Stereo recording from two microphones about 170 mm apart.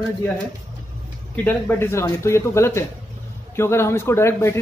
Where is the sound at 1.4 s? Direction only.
10° left (ahead or behind).